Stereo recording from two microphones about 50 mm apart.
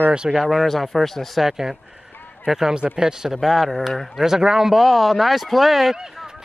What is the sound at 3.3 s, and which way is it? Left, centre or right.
Speech, centre.